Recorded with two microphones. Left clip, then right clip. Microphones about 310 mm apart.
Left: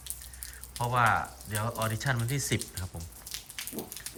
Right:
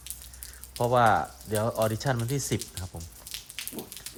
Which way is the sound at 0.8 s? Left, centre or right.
Centre.